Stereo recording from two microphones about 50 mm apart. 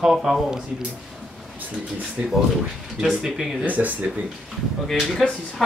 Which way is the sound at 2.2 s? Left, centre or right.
Right.